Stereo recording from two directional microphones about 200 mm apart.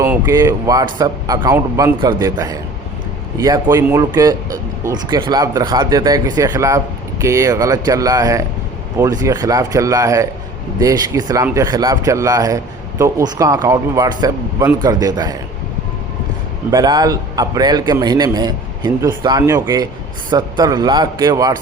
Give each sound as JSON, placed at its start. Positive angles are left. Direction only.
{"t": 0.0, "sound": "speech", "side_deg": -15}
{"t": 16.7, "sound": "a man's voice", "side_deg": -20}